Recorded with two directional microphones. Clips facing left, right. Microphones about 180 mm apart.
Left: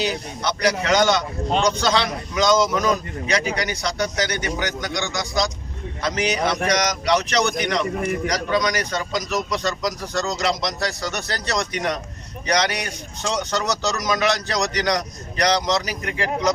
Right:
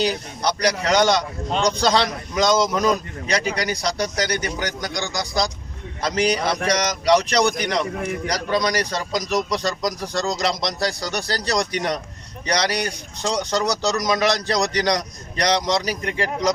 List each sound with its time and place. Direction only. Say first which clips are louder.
0.0 s speech: right 2 dB; 35° right (ahead or behind)